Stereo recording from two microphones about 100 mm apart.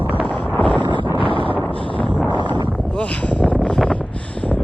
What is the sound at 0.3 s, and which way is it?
Wind noise, 10° left (ahead or behind).